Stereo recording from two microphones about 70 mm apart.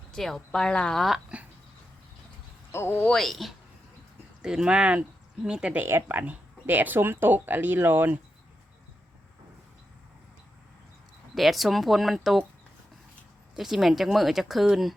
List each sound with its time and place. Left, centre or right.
0.1 s a woman's voice: centre
1.3 s a sound: centre
2.7 s speech: left
3.2 s speech: centre
4.4 s speech: centre
5.7 s speech: right
11.3 s speech: centre
13.6 s speech: centre